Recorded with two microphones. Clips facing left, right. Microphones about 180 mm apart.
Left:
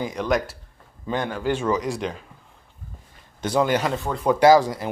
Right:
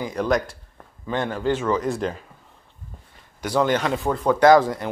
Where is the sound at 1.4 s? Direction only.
15° left (ahead or behind).